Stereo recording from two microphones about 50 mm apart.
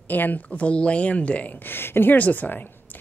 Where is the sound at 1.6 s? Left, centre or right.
Left.